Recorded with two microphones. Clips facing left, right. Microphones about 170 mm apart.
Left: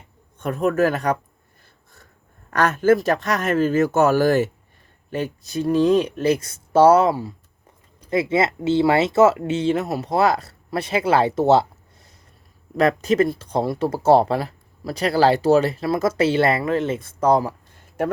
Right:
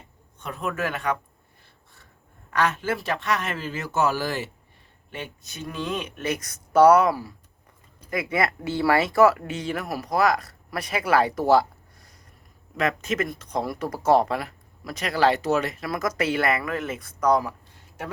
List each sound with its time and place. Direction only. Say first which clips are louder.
0.3 s speech: left 10 dB; 50° left (ahead or behind)
2.5 s a man's voice: left 8 dB; 45° left (ahead or behind)
5.1 s speech: left 12 dB; 35° left (ahead or behind)
12.7 s speech: left 8 dB; 35° left (ahead or behind)
17.7 s a sound: left 12 dB; 50° left (ahead or behind)